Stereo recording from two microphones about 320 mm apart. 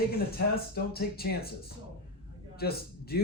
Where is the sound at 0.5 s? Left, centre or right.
Left.